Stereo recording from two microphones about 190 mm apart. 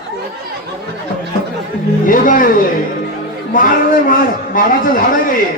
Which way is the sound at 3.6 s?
45° left (ahead or behind).